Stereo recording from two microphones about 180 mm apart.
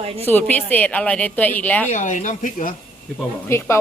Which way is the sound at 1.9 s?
40° left (ahead or behind).